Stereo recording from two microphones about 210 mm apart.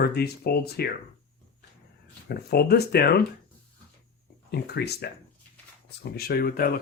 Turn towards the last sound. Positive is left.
turn(degrees=45)  # may be behind; listen again after turning